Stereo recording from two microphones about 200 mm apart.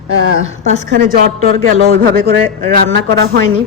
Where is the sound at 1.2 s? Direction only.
50° right (ahead or behind).